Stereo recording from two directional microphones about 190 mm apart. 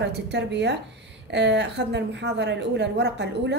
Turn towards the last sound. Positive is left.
turn(degrees=-65)  # may be behind; listen again after turning